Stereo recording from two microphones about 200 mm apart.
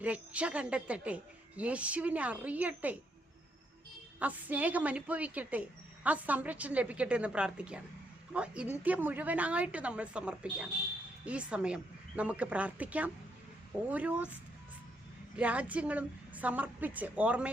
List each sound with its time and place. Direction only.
0.0 s speech: 5° right (ahead or behind)
4.2 s speech: 10° right (ahead or behind)
15.4 s speech: 5° right (ahead or behind)